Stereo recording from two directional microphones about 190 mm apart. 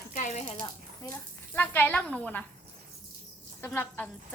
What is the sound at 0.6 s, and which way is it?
Speech, 15° left (ahead or behind).